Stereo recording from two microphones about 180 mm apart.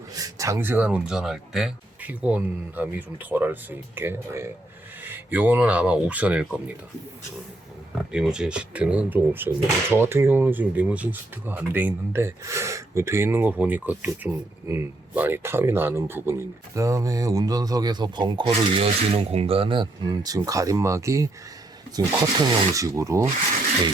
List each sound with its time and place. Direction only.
0.1 s speech: 20° right (ahead or behind)
8.1 s speech: 5° right (ahead or behind)